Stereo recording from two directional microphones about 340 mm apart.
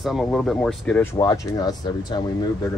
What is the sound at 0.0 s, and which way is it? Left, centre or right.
Speech, centre.